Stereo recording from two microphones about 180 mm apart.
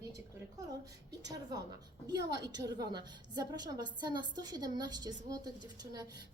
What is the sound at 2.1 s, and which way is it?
A woman's voice, 20° right (ahead or behind).